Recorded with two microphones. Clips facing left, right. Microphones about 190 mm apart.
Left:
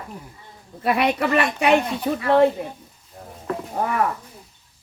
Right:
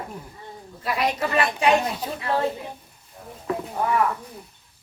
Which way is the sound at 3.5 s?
Centre (ahead or behind).